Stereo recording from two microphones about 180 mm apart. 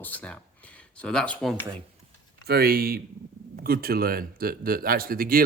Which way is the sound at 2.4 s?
60° right (ahead or behind).